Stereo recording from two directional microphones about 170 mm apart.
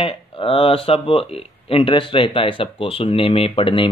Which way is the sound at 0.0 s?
30° left (ahead or behind).